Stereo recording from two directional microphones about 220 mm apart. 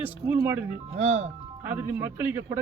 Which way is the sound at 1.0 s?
30° right (ahead or behind).